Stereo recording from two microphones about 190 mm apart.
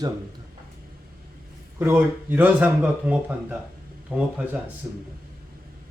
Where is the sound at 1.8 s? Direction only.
10° right (ahead or behind).